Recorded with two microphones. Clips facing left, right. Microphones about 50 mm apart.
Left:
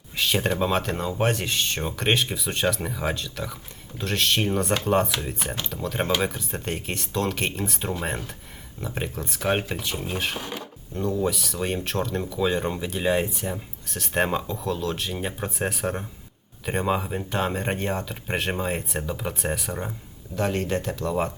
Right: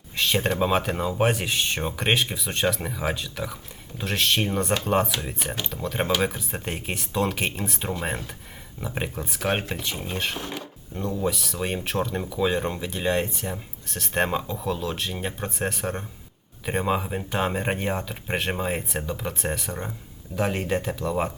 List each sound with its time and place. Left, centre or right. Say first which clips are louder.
0.2 s speech: even; centre
20.3 s speech: even; centre